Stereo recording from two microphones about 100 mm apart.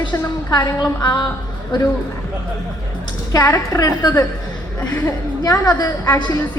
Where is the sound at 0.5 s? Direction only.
40° left (ahead or behind).